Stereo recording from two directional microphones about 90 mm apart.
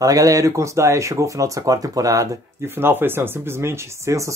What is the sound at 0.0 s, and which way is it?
Speech, 40° right (ahead or behind).